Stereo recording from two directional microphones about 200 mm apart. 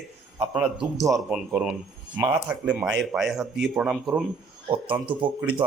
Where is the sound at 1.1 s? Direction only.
5° right (ahead or behind).